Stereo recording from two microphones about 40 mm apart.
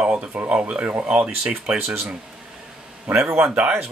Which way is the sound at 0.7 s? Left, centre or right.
Right.